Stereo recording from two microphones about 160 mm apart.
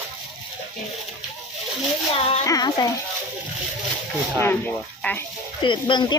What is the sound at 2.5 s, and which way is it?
Speech, 25° left (ahead or behind).